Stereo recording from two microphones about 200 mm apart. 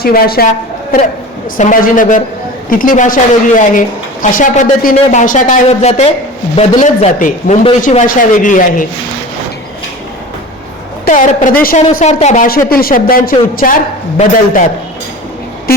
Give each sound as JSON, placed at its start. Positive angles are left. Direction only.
{"t": 0.0, "sound": "speech", "side_deg": 50}
{"t": 1.5, "sound": "a woman's voice", "side_deg": 40}
{"t": 11.0, "sound": "a woman's voice", "side_deg": 40}